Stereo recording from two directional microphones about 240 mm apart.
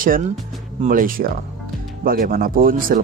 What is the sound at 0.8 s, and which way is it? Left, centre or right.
A man's voice, right.